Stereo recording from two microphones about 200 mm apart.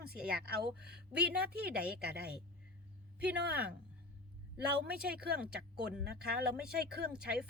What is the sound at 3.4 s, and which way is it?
Speech, 50° right (ahead or behind).